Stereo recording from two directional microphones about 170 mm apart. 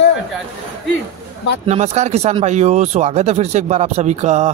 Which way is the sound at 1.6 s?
40° right (ahead or behind).